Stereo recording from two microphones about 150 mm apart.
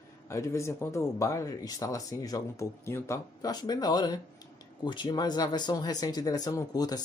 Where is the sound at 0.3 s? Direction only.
20° left (ahead or behind).